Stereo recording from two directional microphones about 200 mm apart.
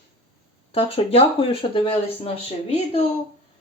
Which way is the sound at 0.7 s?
30° left (ahead or behind).